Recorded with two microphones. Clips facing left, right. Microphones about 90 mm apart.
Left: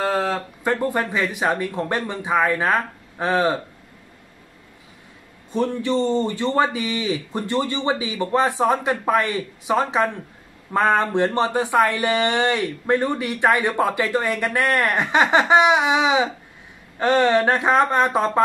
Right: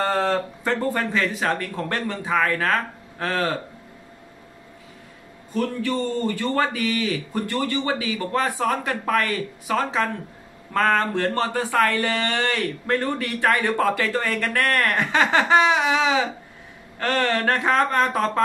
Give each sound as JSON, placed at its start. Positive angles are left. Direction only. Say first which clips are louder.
{"t": 0.0, "sound": "speech", "louder": "even", "side_deg": 5}
{"t": 5.5, "sound": "speech", "louder": "left 3 dB", "side_deg": 20}